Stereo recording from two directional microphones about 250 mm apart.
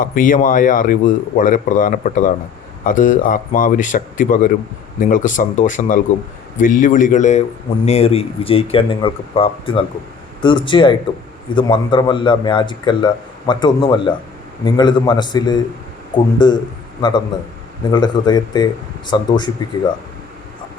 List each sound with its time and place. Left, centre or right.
0.0 s speech: left; by 19.5 s centre